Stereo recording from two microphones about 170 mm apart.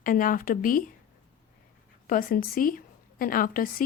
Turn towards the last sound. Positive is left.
turn(degrees=55)  # may be behind; listen again after turning